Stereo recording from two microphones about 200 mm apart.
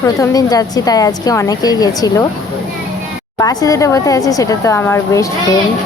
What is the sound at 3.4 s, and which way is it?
A woman's voice, 20° left (ahead or behind).